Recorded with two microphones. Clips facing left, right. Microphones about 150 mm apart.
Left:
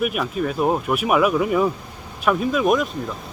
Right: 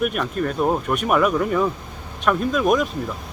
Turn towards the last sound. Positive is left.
turn(degrees=0)  # may be behind; listen again after turning